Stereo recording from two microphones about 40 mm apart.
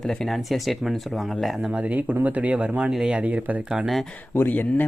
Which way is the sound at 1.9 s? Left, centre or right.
Right.